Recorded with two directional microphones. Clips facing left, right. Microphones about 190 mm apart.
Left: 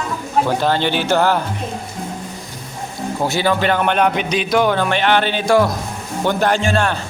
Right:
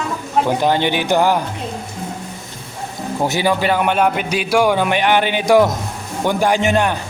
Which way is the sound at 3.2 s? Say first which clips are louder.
Even; 15° right (ahead or behind).